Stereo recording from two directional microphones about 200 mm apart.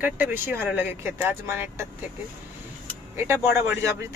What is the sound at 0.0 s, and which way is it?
Speech, 10° right (ahead or behind).